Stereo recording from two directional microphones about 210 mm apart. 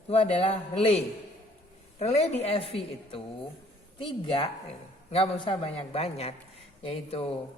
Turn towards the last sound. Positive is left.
turn(degrees=25)  # may be behind; listen again after turning